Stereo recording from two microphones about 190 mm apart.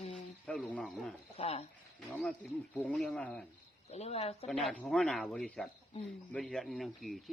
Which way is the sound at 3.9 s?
35° left (ahead or behind).